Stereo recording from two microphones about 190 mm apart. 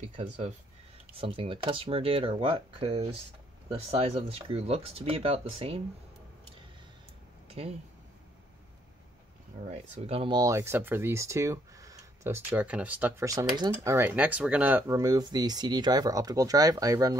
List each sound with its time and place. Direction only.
1.1 s speech: 30° right (ahead or behind)
7.4 s a sound: 35° right (ahead or behind)
9.7 s speech: 35° right (ahead or behind); by 17.2 s 20° right (ahead or behind)